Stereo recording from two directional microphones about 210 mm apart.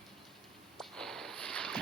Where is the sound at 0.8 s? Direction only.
Centre (ahead or behind).